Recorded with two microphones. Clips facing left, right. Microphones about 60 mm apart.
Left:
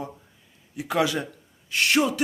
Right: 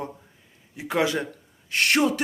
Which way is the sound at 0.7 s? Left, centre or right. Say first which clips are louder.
Even; right.